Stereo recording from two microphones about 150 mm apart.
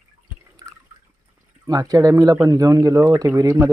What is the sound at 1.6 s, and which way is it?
Speech, 25° right (ahead or behind).